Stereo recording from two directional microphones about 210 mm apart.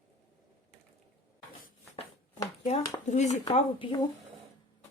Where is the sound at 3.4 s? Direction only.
25° left (ahead or behind).